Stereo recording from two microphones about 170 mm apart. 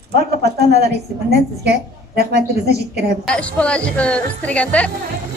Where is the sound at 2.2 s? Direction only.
70° right (ahead or behind).